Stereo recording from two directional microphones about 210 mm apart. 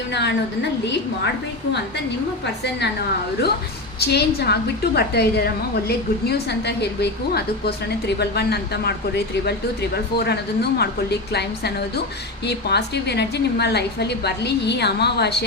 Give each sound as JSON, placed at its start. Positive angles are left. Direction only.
{"t": 0.1, "sound": "a woman's voice", "side_deg": 55}
{"t": 4.0, "sound": "a woman's voice", "side_deg": 50}